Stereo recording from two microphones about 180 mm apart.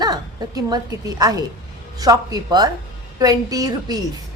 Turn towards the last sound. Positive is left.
turn(degrees=-20)  # may be behind; listen again after turning